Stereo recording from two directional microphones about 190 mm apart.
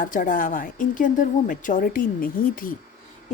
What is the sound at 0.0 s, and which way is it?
A woman's voice, 45° left (ahead or behind).